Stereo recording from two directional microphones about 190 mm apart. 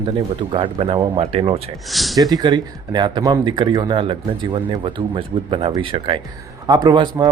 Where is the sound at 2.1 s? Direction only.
20° right (ahead or behind).